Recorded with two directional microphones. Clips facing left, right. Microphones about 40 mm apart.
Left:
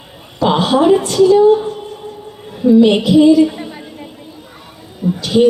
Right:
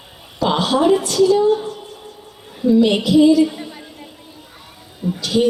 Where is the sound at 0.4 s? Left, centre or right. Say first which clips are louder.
Left 4 dB; centre.